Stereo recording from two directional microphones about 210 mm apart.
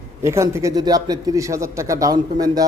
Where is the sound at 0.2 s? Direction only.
15° right (ahead or behind).